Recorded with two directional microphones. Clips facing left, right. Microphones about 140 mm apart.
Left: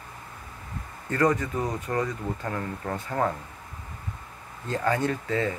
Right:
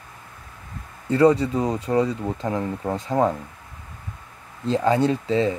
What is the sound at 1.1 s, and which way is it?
Speech, 15° right (ahead or behind).